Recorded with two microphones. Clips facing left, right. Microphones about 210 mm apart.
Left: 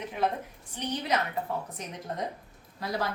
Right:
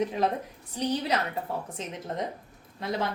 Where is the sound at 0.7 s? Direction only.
35° right (ahead or behind).